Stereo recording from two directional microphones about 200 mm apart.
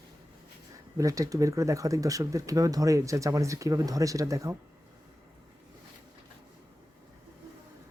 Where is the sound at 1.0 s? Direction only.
15° right (ahead or behind).